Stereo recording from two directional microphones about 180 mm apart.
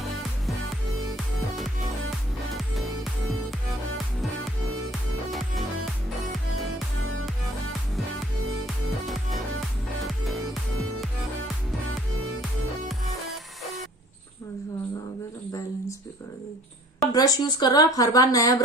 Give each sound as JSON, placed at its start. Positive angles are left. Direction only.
{"t": 1.1, "sound": "music", "side_deg": 0}
{"t": 4.9, "sound": "music", "side_deg": 0}
{"t": 8.6, "sound": "music", "side_deg": 0}
{"t": 17.1, "sound": "speech", "side_deg": 20}